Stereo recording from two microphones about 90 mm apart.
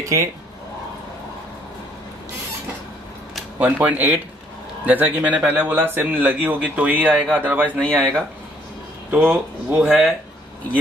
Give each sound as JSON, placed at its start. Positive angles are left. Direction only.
{"t": 0.0, "sound": "speech", "side_deg": -35}
{"t": 3.5, "sound": "speech", "side_deg": -20}
{"t": 9.1, "sound": "speech", "side_deg": -10}